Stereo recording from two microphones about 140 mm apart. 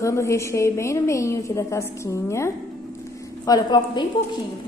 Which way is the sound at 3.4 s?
30° left (ahead or behind).